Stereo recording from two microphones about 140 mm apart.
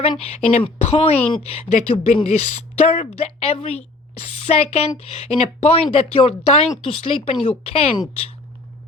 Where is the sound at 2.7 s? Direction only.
50° left (ahead or behind).